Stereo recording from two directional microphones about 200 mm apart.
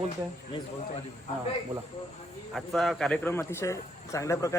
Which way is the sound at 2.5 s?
Centre (ahead or behind).